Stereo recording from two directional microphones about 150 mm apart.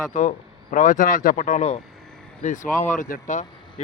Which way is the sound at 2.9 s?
60° left (ahead or behind).